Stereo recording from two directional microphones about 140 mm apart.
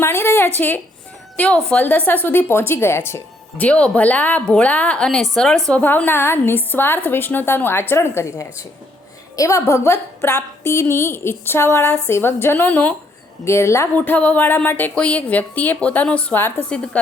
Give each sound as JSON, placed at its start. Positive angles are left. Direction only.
{"t": 0.0, "sound": "a woman's voice", "side_deg": 20}